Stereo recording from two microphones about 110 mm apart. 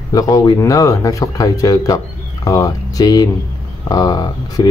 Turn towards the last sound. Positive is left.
turn(degrees=40)  # may be behind; listen again after turning